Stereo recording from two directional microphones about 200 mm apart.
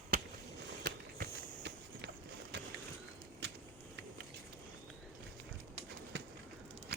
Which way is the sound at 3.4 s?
60° right (ahead or behind).